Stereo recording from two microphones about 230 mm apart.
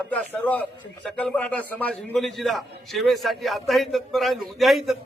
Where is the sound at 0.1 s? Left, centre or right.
Centre.